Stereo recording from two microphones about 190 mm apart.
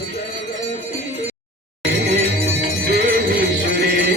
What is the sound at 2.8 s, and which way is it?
Music, 50° right (ahead or behind).